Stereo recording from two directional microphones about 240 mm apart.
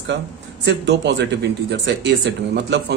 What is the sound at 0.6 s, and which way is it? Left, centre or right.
Speech, right.